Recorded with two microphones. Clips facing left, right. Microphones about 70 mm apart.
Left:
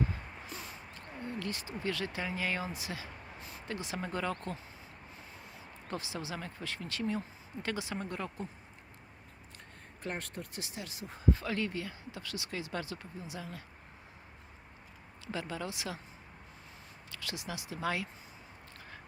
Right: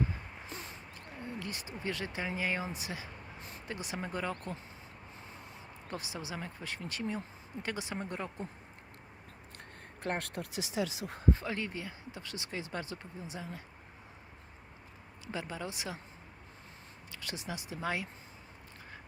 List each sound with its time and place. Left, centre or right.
1.4 s speech: right
5.9 s speech: centre
10.0 s speech: right
11.3 s speech: right
15.3 s speech: right
17.1 s speech: right